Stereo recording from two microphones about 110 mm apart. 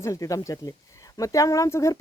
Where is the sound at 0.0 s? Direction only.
30° left (ahead or behind).